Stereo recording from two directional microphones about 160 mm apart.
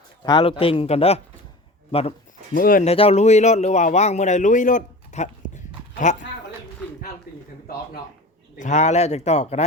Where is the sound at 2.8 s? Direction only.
40° left (ahead or behind).